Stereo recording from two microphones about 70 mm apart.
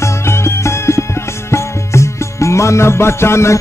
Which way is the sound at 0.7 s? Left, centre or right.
Left.